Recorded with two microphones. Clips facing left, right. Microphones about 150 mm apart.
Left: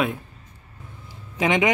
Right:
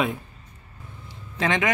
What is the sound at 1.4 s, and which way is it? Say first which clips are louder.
Speech: left 3 dB; 15° left (ahead or behind).